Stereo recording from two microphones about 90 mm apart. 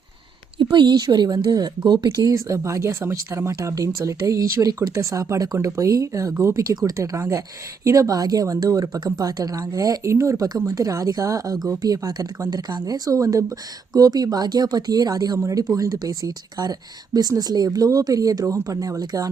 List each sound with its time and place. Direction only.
0.6 s speech: 60° right (ahead or behind)
2.3 s speech: 35° right (ahead or behind)